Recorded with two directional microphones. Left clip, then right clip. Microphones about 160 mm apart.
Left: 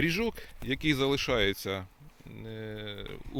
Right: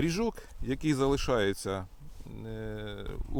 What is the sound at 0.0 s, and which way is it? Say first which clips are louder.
Speech: left 2 dB; 20° right (ahead or behind).